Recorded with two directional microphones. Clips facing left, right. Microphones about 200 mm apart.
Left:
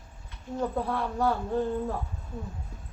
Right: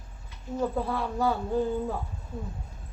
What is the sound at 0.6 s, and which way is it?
Speech, centre (ahead or behind).